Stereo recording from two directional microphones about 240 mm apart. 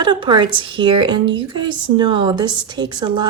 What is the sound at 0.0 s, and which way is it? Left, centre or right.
A woman's voice, centre.